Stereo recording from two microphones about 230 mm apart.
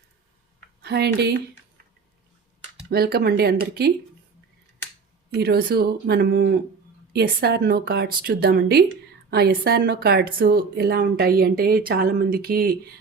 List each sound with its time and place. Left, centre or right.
0.8 s speech: right
2.9 s a woman's voice: right
5.3 s a woman's voice: right